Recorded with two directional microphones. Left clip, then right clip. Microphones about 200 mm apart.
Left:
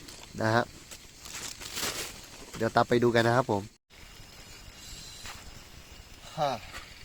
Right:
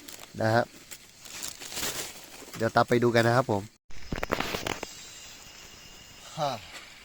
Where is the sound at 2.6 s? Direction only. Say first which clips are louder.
Right 1 dB; 5° right (ahead or behind).